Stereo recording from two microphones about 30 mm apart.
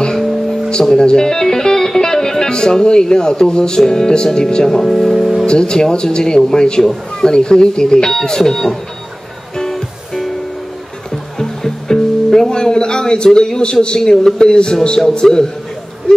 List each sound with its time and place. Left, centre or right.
0.9 s speech: left
5.1 s music: centre
5.4 s speech: left
9.6 s music: left
11.1 s music: centre; by 13.7 s left
13.9 s speech: centre